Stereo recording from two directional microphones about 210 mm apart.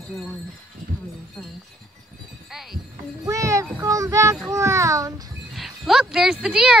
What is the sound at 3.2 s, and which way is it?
A child's voice, 15° right (ahead or behind).